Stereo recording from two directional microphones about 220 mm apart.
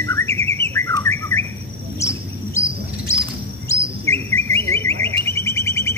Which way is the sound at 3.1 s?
15° left (ahead or behind).